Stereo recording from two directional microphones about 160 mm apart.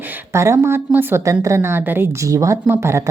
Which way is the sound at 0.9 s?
10° right (ahead or behind).